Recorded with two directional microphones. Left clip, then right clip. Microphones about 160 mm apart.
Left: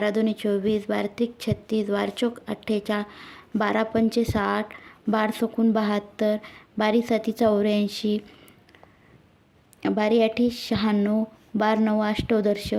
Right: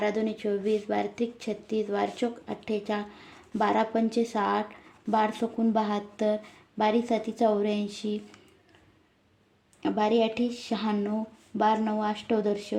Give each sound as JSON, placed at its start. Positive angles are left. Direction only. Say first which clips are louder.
{"t": 0.0, "sound": "speech", "louder": "left 4 dB", "side_deg": 45}
{"t": 9.8, "sound": "speech", "louder": "left 4 dB", "side_deg": 45}